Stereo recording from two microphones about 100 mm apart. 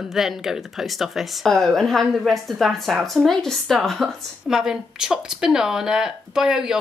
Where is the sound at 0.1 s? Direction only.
5° right (ahead or behind).